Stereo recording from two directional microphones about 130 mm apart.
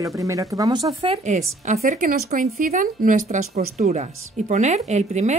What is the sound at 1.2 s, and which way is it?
A woman's voice, 65° right (ahead or behind).